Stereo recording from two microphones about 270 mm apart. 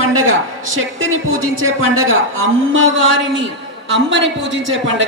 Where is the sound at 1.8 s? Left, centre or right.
Right.